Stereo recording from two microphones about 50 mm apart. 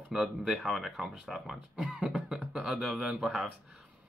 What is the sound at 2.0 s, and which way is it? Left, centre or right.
Beatboxing, centre.